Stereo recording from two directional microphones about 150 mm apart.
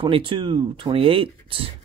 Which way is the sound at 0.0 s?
35° right (ahead or behind).